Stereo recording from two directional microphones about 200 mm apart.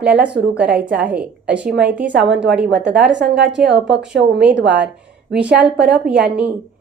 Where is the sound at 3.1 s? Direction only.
60° right (ahead or behind).